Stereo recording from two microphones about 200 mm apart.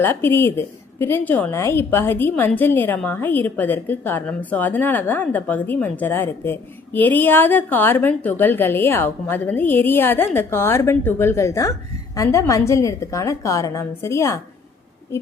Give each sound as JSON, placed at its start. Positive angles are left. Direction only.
{"t": 0.0, "sound": "a woman's voice", "side_deg": 10}